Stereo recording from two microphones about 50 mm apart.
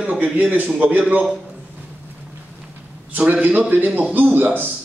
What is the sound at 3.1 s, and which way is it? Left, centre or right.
A man's voice, right.